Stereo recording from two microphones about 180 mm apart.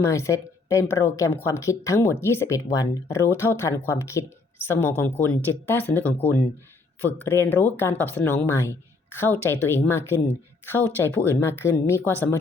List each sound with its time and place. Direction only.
0.0 s speech: 15° left (ahead or behind)